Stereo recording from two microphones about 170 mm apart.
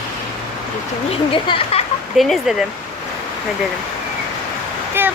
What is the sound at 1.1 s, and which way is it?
Speech, 30° left (ahead or behind).